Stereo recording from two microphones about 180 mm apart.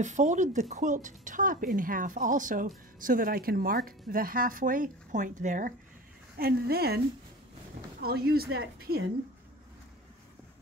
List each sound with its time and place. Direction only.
0.0 s speech: 40° right (ahead or behind)
6.3 s a woman's voice: 60° right (ahead or behind)
8.0 s a woman's voice: 60° right (ahead or behind)